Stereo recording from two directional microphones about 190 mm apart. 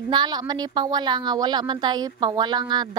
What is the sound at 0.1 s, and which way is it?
A woman's voice, 25° right (ahead or behind).